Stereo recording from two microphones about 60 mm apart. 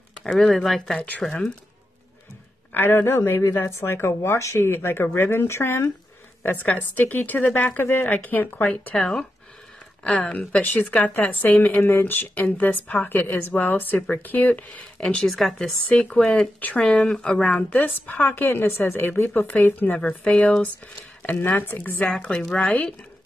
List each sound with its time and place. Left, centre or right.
0.2 s speech: centre
2.7 s speech: left
6.4 s a woman's voice: left
7.7 s speech: left
8.1 s a woman's voice: left
8.9 s a woman's voice: centre; by 15.0 s left
15.2 s speech: centre
15.9 s speech: centre
16.5 s a woman's voice: left
17.8 s speech: left
20.0 s a woman's voice: centre
21.3 s speech: left
22.0 s a woman's voice: centre